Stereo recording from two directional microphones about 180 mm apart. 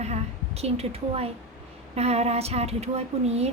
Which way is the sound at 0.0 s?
35° right (ahead or behind).